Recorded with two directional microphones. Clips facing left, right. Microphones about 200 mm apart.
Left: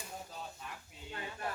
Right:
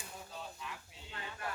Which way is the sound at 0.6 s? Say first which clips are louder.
Right 1 dB; 45° left (ahead or behind).